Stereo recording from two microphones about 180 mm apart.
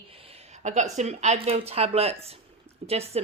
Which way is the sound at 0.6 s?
40° right (ahead or behind).